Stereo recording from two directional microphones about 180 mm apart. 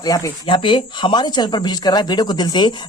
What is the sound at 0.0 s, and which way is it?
Speech, 20° left (ahead or behind).